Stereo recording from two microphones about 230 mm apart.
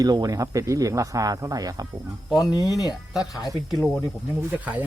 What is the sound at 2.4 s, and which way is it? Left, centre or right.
Speech, centre.